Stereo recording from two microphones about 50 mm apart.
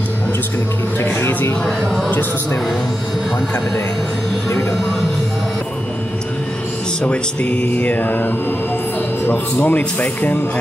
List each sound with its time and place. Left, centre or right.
1.0 s speech: left
7.0 s speech: left
7.6 s speech: left
9.3 s speech: left